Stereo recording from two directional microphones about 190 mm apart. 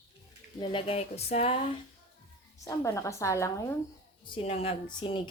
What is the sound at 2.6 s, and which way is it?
A woman's voice, 15° left (ahead or behind).